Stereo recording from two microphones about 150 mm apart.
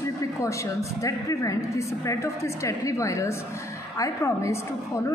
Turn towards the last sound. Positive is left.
turn(degrees=20)  # may be behind; listen again after turning